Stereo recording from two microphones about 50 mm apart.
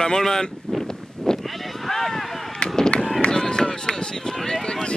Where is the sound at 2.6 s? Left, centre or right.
Centre.